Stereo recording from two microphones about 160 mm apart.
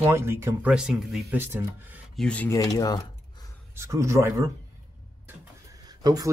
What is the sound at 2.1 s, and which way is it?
Speech, 10° left (ahead or behind).